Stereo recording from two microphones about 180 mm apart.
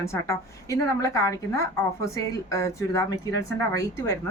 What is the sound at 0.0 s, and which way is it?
A woman's voice, 15° left (ahead or behind).